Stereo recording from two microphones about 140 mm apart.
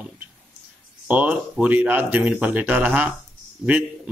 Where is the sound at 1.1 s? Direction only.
10° right (ahead or behind).